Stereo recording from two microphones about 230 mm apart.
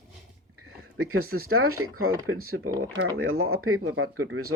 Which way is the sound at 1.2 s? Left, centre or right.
Right.